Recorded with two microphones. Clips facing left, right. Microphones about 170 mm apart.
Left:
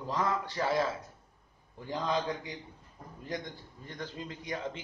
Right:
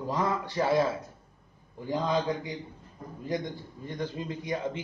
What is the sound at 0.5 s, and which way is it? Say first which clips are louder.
Speech: right 6 dB; 15° right (ahead or behind).